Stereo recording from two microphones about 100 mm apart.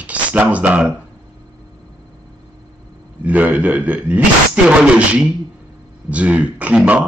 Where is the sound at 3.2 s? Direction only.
15° right (ahead or behind).